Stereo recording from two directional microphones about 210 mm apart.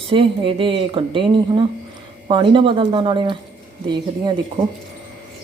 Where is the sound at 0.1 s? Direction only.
25° right (ahead or behind).